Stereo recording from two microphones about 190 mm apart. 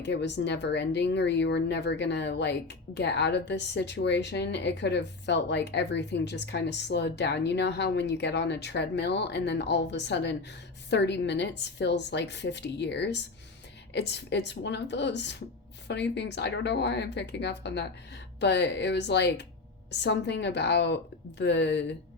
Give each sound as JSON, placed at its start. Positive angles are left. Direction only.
{"t": 0.0, "sound": "speech", "side_deg": 65}